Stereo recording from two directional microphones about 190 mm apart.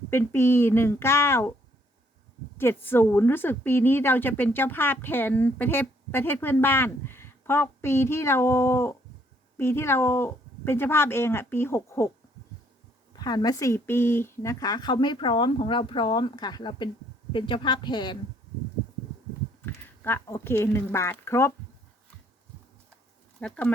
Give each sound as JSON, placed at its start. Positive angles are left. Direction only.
{"t": 0.1, "sound": "a woman's voice", "side_deg": 15}
{"t": 2.6, "sound": "a woman's voice", "side_deg": 10}
{"t": 13.1, "sound": "speech", "side_deg": 20}
{"t": 19.6, "sound": "speech", "side_deg": 10}
{"t": 23.4, "sound": "a woman's voice", "side_deg": 5}